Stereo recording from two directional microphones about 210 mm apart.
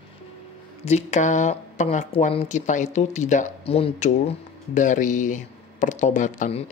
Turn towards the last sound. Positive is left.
turn(degrees=30)  # may be behind; listen again after turning